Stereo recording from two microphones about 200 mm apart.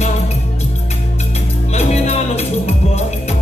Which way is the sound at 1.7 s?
35° left (ahead or behind).